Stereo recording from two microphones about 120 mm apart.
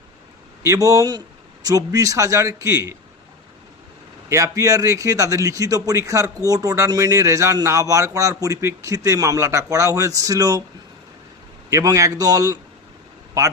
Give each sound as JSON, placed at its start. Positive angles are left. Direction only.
{"t": 0.6, "sound": "speech", "side_deg": -25}
{"t": 4.3, "sound": "speech", "side_deg": -25}
{"t": 11.7, "sound": "speech", "side_deg": -25}